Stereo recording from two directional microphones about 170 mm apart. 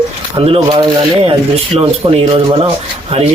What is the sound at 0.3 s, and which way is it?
Speech, 35° right (ahead or behind).